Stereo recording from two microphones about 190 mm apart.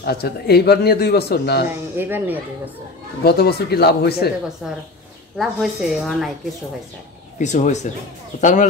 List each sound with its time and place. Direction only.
0.0 s speech: 55° left (ahead or behind)
1.7 s speech: 10° right (ahead or behind)
3.3 s speech: 55° left (ahead or behind)
4.6 s speech: centre (ahead or behind)
7.3 s speech: 40° left (ahead or behind)